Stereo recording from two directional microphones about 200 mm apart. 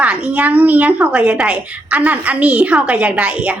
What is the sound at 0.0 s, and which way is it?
A woman's voice, 5° right (ahead or behind).